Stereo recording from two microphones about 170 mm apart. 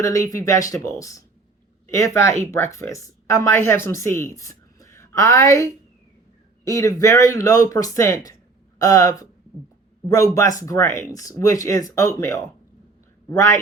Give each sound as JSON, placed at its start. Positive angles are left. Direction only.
{"t": 0.0, "sound": "speech", "side_deg": 20}
{"t": 6.7, "sound": "speech", "side_deg": 20}